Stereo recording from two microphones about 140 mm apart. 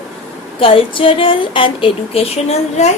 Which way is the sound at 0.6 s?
40° left (ahead or behind).